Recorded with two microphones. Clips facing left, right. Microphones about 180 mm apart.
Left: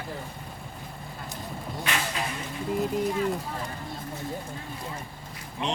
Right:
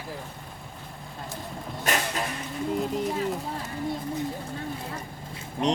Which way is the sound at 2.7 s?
Centre (ahead or behind).